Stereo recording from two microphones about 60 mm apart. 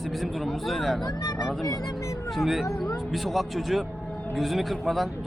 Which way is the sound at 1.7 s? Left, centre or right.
Left.